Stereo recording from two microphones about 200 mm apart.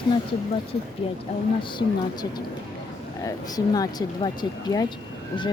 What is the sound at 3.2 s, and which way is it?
Speech, 20° left (ahead or behind).